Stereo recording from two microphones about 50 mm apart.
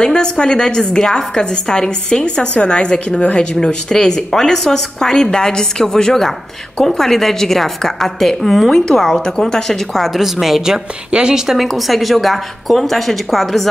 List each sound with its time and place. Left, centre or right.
0.0 s a woman's voice: centre